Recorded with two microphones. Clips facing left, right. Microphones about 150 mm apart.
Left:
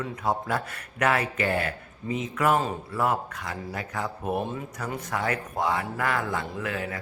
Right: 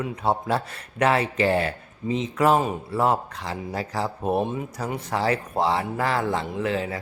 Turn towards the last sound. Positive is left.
turn(degrees=-25)  # may be behind; listen again after turning